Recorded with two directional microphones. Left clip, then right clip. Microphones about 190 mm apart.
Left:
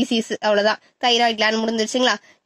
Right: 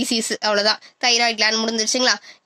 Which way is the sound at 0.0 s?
50° left (ahead or behind).